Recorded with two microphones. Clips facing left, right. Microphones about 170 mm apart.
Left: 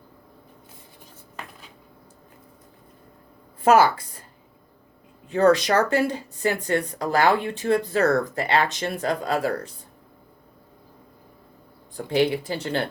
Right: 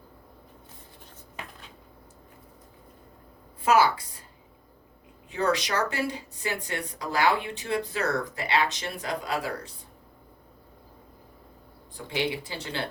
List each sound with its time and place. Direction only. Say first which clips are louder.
3.6 s a woman's voice: left 5 dB; 50° left (ahead or behind)
5.3 s speech: left 9 dB; 50° left (ahead or behind)
11.9 s speech: left 8 dB; 45° left (ahead or behind)